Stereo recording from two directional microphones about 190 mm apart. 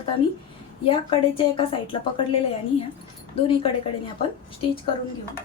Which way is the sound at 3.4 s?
30° left (ahead or behind).